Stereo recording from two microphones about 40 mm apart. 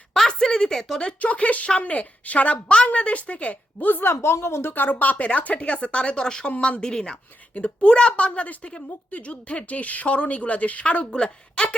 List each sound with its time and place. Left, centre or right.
0.1 s a sound: centre
1.0 s a woman's voice: left
3.8 s a woman's voice: left
4.2 s a woman's voice: left
4.7 s a woman's voice: left
11.0 s a woman's voice: left